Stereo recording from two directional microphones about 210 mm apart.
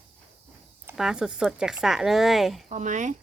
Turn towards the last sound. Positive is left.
turn(degrees=-35)  # may be behind; listen again after turning